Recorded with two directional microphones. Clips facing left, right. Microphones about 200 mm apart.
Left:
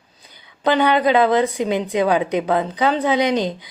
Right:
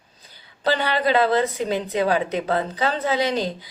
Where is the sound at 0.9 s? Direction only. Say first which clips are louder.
Left 4 dB; 15° left (ahead or behind).